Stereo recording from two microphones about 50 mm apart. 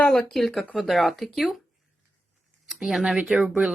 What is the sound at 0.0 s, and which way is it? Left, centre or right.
Speech, centre.